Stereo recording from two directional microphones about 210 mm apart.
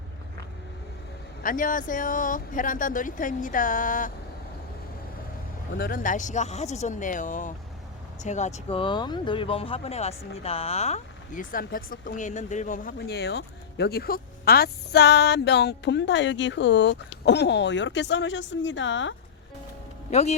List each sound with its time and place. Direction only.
1.4 s speech: 40° left (ahead or behind)
5.7 s speech: 45° left (ahead or behind); by 19.1 s 60° left (ahead or behind)
20.1 s speech: 30° left (ahead or behind)